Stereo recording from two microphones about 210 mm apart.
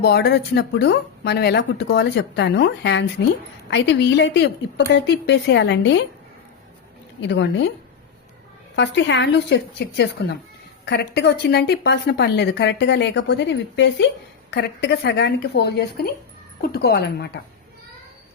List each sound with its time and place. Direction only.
0.0 s a woman's voice: 50° left (ahead or behind)
7.2 s a woman's voice: 55° left (ahead or behind)
8.7 s a woman's voice: 55° left (ahead or behind)